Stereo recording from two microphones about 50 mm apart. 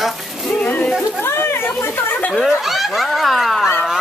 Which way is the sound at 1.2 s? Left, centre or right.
Left.